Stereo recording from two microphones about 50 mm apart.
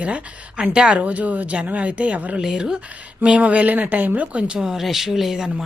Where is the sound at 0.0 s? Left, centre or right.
Right.